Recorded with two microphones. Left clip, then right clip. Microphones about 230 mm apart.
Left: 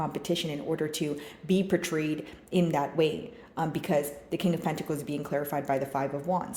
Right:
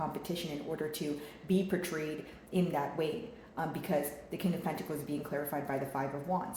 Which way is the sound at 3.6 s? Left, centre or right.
Left.